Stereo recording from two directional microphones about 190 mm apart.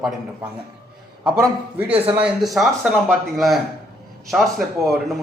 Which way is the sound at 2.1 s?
5° right (ahead or behind).